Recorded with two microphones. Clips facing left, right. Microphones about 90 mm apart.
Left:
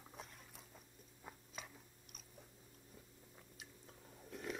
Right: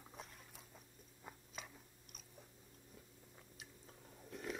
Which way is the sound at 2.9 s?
Centre (ahead or behind).